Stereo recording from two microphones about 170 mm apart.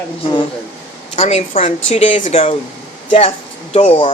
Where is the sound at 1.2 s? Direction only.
40° left (ahead or behind).